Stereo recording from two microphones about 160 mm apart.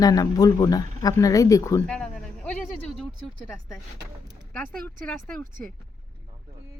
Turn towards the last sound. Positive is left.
turn(degrees=5)  # may be behind; listen again after turning